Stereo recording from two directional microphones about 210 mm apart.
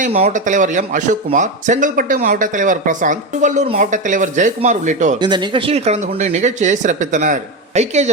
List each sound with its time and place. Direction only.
0.0 s speech: 30° right (ahead or behind)
5.2 s speech: 20° right (ahead or behind)